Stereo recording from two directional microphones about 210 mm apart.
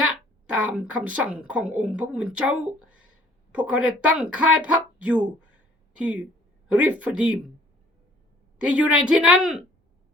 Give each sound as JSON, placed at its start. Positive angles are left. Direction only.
{"t": 0.1, "sound": "speech", "side_deg": -5}
{"t": 8.5, "sound": "speech", "side_deg": -5}